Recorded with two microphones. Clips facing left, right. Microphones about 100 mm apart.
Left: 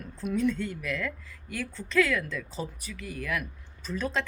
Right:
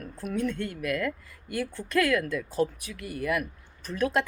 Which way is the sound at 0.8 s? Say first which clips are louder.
Right 4 dB; 10° right (ahead or behind).